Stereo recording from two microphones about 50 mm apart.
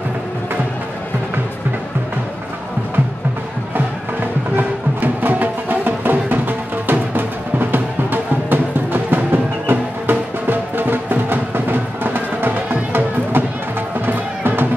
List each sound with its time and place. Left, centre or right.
3.7 s music: right